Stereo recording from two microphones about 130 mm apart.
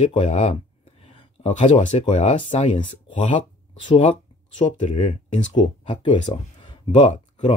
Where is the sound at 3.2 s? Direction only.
65° left (ahead or behind).